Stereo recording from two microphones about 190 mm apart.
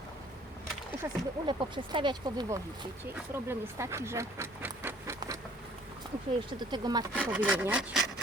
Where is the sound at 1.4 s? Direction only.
25° right (ahead or behind).